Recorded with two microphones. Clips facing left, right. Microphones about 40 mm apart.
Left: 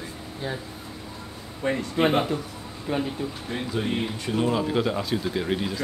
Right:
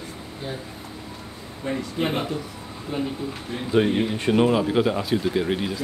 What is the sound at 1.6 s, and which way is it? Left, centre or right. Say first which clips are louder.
Speech: left 2 dB; left.